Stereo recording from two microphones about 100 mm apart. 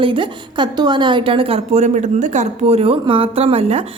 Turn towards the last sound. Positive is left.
turn(degrees=-80)